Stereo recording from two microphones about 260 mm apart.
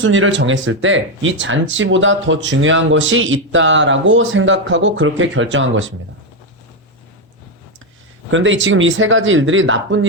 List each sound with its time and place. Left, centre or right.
0.0 s speech: right
8.3 s speech: right